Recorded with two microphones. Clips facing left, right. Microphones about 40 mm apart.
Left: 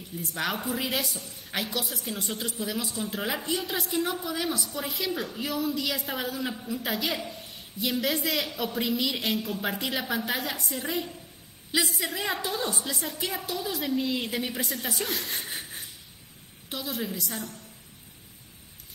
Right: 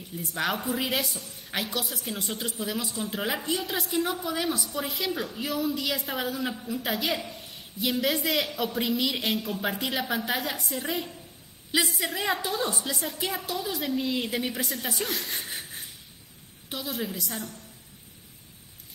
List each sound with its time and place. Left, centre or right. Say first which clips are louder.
0.3 s a woman's voice: right 2 dB; centre